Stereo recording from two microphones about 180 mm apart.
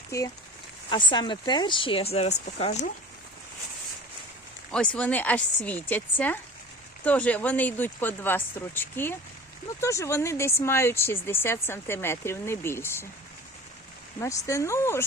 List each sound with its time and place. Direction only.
0.1 s speech: 15° left (ahead or behind); by 2.9 s 35° left (ahead or behind)
4.7 s speech: 5° left (ahead or behind)
14.2 s speech: 15° left (ahead or behind)